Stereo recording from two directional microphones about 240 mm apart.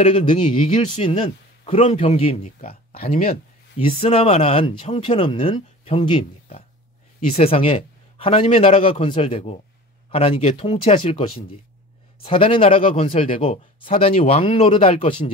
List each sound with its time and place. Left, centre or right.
0.0 s a man's voice: left
3.7 s a man's voice: left
12.3 s a man's voice: left